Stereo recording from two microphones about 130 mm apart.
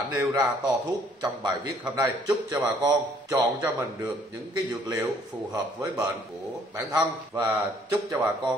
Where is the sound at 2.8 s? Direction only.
25° right (ahead or behind).